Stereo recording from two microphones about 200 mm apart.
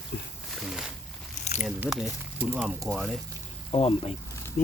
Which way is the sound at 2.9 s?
Centre (ahead or behind).